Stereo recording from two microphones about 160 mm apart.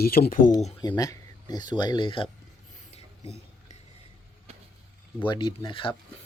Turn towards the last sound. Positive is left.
turn(degrees=35)  # may be behind; listen again after turning